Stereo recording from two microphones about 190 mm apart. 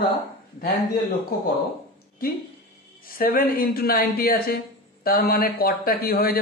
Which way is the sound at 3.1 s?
50° left (ahead or behind).